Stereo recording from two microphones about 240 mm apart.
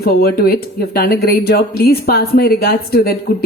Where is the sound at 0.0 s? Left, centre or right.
Left.